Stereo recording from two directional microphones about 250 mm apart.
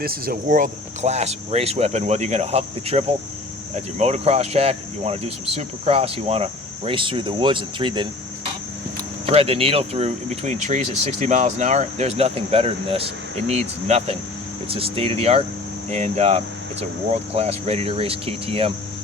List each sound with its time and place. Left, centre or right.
0.0 s speech: right; by 8.0 s centre
9.2 s speech: right